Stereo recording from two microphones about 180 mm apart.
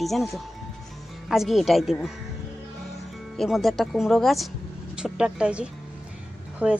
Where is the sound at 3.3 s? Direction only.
Centre (ahead or behind).